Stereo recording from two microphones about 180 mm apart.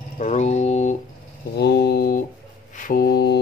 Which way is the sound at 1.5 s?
65° left (ahead or behind).